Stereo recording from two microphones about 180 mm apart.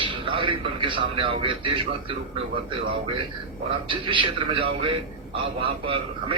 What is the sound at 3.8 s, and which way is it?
A man's voice, 25° right (ahead or behind).